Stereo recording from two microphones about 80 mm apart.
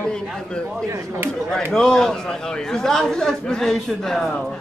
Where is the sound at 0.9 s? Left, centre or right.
Right.